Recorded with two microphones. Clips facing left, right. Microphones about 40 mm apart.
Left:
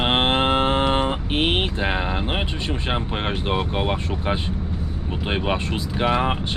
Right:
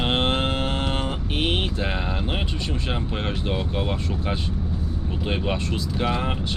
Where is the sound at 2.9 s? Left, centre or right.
Left.